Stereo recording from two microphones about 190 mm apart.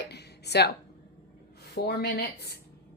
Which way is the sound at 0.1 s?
60° left (ahead or behind).